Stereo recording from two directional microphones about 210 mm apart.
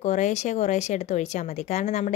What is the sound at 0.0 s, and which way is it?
Speech, 35° left (ahead or behind).